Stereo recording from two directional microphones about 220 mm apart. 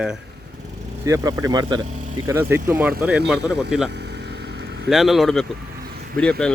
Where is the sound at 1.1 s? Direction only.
15° right (ahead or behind).